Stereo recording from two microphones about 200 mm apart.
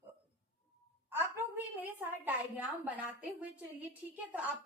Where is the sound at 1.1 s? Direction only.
10° right (ahead or behind).